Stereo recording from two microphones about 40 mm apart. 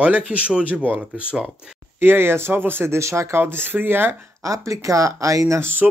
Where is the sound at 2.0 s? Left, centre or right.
Right.